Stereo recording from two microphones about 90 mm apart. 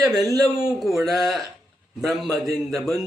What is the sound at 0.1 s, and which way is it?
Speech, 45° right (ahead or behind).